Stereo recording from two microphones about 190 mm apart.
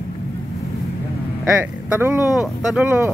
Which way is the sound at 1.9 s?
15° right (ahead or behind).